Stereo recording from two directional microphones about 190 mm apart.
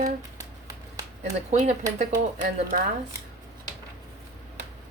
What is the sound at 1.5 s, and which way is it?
Speech, 40° right (ahead or behind).